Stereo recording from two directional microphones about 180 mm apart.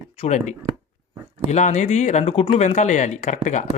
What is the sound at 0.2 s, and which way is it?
Speech, 40° left (ahead or behind).